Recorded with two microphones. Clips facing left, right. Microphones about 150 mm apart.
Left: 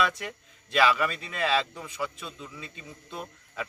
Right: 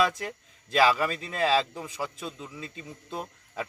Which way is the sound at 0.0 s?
35° right (ahead or behind).